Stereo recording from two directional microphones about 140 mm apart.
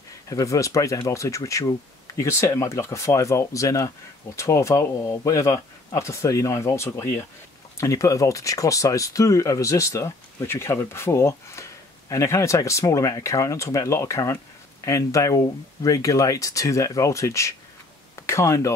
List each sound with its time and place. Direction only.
0.3 s speech: 25° left (ahead or behind)